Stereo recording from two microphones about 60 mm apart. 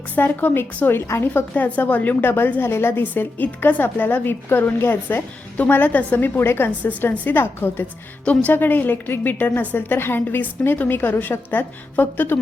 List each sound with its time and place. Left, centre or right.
0.2 s a woman's voice: left
6.7 s a woman's voice: left
8.2 s a woman's voice: left